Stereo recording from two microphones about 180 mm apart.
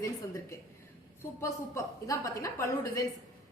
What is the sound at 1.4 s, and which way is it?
A woman's voice, 15° left (ahead or behind).